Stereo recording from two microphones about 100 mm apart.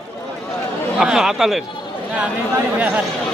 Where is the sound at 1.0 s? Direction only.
5° right (ahead or behind).